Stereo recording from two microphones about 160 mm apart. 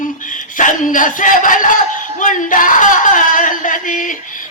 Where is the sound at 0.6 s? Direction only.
55° left (ahead or behind).